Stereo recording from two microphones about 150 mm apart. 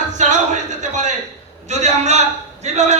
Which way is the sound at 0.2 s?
55° right (ahead or behind).